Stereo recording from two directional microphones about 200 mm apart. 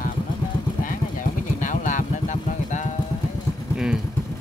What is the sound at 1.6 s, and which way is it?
Vehicle, 40° left (ahead or behind).